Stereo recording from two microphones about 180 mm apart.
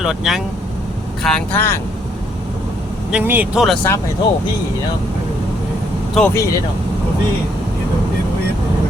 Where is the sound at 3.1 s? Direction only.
10° right (ahead or behind).